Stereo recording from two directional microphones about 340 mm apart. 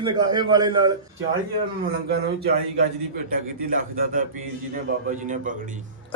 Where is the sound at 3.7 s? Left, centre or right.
Right.